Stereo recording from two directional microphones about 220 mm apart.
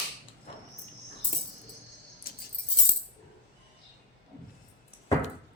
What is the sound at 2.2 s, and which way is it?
Music, 40° left (ahead or behind).